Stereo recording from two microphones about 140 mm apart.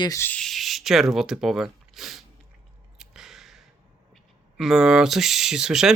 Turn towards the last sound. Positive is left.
turn(degrees=-5)  # may be behind; listen again after turning